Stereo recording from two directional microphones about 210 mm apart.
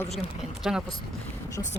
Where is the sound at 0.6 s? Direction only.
5° right (ahead or behind).